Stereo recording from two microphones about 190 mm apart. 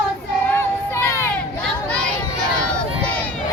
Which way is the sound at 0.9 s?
15° left (ahead or behind).